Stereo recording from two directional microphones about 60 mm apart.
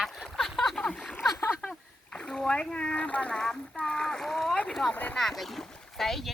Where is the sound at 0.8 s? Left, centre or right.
Centre.